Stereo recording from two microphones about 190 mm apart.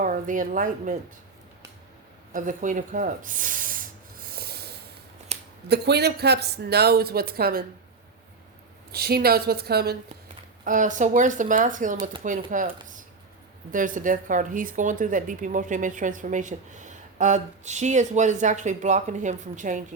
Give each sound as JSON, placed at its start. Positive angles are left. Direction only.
{"t": 0.0, "sound": "speech", "side_deg": -45}
{"t": 2.3, "sound": "snake", "side_deg": -45}
{"t": 5.3, "sound": "a sound", "side_deg": -35}
{"t": 5.6, "sound": "speech", "side_deg": -60}
{"t": 8.9, "sound": "speech", "side_deg": -55}
{"t": 10.6, "sound": "speech", "side_deg": -45}
{"t": 13.7, "sound": "speech", "side_deg": -45}